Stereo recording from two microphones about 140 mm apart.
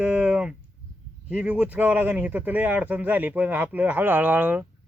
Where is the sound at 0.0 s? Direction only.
10° right (ahead or behind).